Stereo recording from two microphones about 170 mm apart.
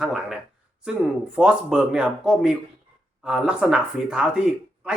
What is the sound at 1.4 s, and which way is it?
Speech, 5° right (ahead or behind).